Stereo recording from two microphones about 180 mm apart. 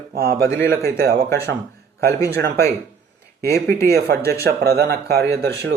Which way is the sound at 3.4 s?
60° right (ahead or behind).